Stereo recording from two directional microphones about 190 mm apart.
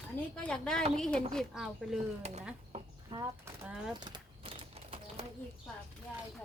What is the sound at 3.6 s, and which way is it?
Speech, 5° right (ahead or behind).